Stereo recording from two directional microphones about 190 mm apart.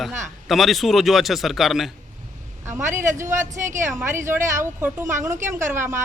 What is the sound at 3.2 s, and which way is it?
A woman's voice, 15° right (ahead or behind).